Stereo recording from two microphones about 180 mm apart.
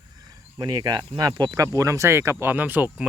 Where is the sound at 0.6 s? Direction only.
25° right (ahead or behind).